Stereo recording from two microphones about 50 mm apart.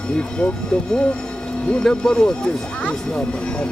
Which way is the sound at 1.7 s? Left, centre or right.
Centre.